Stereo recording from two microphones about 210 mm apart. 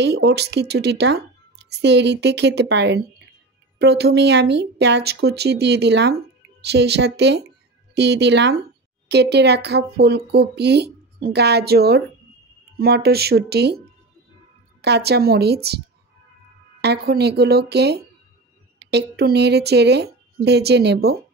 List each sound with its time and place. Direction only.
0.0 s speech: 55° right (ahead or behind)
16.8 s speech: 50° right (ahead or behind)